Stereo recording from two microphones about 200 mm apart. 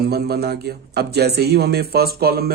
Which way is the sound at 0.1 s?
50° right (ahead or behind).